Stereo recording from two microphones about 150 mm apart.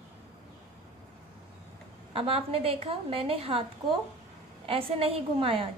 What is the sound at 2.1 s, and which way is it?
A woman's voice, 40° right (ahead or behind).